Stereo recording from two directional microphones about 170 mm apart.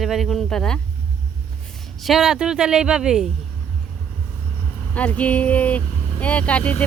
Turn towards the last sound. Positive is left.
turn(degrees=10)  # may be behind; listen again after turning